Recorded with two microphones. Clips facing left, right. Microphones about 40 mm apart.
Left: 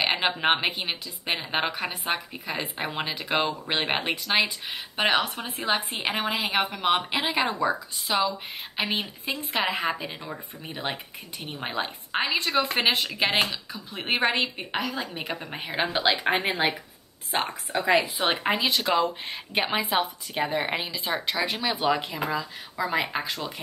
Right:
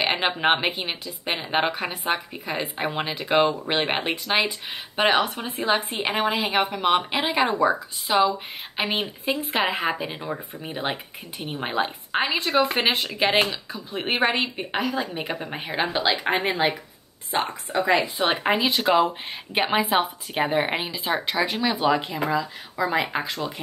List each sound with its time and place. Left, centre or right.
0.0 s a sound: centre
0.4 s a woman's voice: centre
7.4 s speech: centre
15.7 s a woman's voice: centre
21.5 s a woman's voice: centre